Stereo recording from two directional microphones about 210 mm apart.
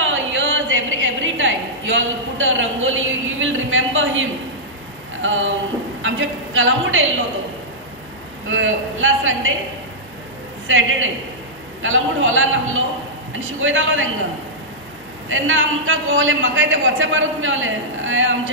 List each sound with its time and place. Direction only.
0.0 s a sound: 65° right (ahead or behind)
5.2 s a man's voice: 65° right (ahead or behind)
8.5 s a man's voice: 70° right (ahead or behind)
10.7 s a man's voice: 70° right (ahead or behind)
15.2 s a man's voice: 70° right (ahead or behind)